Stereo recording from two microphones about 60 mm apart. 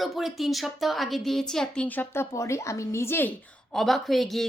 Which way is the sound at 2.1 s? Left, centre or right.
Left.